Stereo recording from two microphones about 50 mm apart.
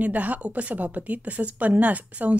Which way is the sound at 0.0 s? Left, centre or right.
Right.